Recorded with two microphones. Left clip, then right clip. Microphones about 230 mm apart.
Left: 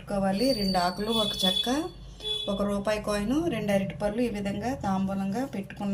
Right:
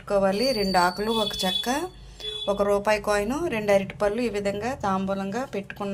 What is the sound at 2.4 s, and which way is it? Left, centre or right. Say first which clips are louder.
A woman's voice: right 9 dB; right.